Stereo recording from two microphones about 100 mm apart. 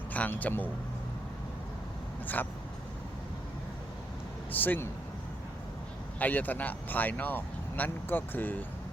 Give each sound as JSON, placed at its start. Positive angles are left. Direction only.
{"t": 0.1, "sound": "speech", "side_deg": 15}
{"t": 2.2, "sound": "speech", "side_deg": 20}
{"t": 4.5, "sound": "speech", "side_deg": 20}
{"t": 6.1, "sound": "speech", "side_deg": 15}